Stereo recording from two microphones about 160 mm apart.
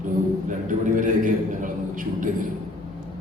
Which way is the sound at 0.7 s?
55° right (ahead or behind).